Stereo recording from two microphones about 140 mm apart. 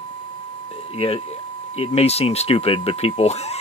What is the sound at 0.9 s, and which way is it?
Speech, 45° left (ahead or behind).